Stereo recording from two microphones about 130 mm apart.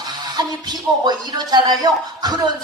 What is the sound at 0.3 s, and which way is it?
Speech, 30° right (ahead or behind).